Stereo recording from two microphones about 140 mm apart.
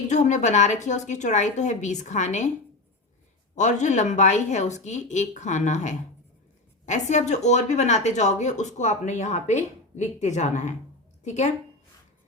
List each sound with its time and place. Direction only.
0.1 s speech: 60° left (ahead or behind)
3.5 s a woman's voice: 60° left (ahead or behind)